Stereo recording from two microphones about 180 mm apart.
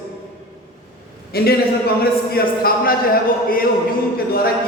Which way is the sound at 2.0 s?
55° left (ahead or behind).